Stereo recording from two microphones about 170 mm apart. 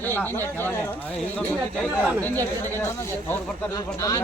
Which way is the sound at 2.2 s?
10° left (ahead or behind).